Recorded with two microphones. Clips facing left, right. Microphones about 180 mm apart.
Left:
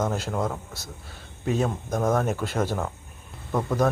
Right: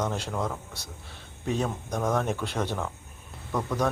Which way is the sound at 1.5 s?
5° left (ahead or behind).